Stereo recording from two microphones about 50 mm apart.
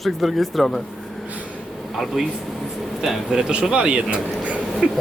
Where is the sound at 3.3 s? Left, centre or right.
Centre.